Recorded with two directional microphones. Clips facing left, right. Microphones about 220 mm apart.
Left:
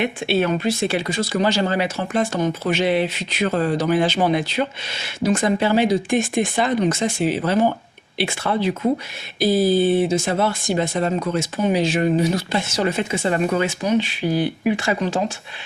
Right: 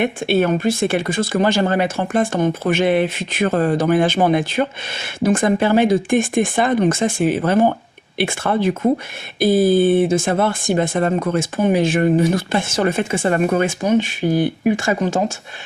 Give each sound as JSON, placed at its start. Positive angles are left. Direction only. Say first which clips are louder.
{"t": 0.0, "sound": "speech", "louder": "right 3 dB", "side_deg": -50}